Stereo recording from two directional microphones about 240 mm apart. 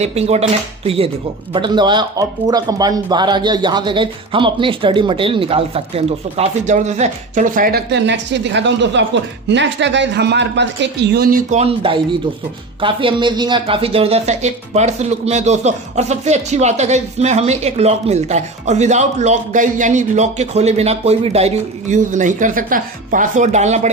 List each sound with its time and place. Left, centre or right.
0.0 s speech: right
11.6 s speech: right